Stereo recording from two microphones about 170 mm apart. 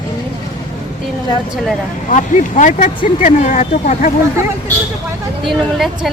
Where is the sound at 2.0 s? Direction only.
45° left (ahead or behind).